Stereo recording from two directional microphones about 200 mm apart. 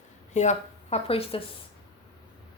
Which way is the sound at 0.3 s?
35° left (ahead or behind).